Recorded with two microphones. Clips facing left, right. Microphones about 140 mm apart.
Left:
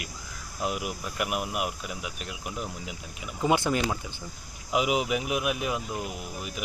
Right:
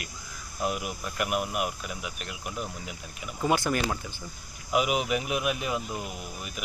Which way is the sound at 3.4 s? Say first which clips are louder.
Left 1 dB; 20° left (ahead or behind).